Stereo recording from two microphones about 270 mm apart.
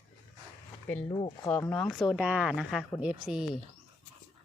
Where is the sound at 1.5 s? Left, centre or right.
Centre.